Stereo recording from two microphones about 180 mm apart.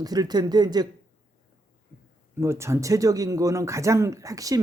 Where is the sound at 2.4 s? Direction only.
15° right (ahead or behind).